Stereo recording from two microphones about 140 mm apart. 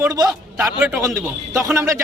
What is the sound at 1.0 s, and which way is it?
Speech, 20° right (ahead or behind).